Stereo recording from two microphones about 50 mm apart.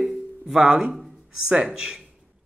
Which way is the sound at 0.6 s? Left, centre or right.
Centre.